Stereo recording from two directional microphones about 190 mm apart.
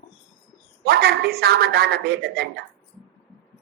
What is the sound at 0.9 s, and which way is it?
A man's voice, 55° right (ahead or behind).